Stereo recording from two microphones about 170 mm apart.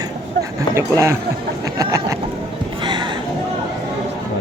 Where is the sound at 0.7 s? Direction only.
15° right (ahead or behind).